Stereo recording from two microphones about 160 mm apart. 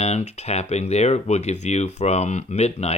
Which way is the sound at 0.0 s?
40° left (ahead or behind).